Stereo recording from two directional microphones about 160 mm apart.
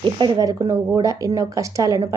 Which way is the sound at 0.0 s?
25° right (ahead or behind).